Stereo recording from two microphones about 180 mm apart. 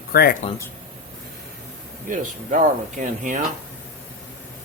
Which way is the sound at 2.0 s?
45° right (ahead or behind).